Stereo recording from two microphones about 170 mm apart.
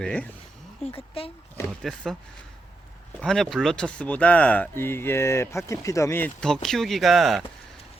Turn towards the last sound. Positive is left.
turn(degrees=0)  # may be behind; listen again after turning